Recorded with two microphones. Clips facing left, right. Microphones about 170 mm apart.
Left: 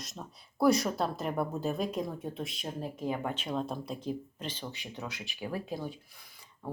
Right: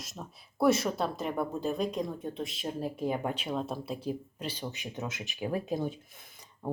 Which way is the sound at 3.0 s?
10° right (ahead or behind).